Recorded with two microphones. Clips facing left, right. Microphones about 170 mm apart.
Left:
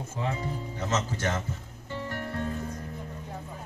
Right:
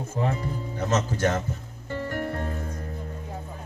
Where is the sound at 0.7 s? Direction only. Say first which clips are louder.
Right 5 dB; 55° right (ahead or behind).